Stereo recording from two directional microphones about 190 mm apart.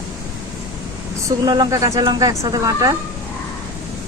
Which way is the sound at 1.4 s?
20° right (ahead or behind).